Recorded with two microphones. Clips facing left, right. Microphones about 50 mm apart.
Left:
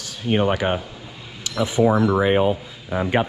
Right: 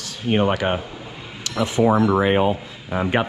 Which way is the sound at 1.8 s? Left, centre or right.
Right.